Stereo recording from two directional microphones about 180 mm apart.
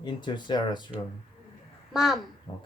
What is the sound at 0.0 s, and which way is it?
Speech, 25° left (ahead or behind).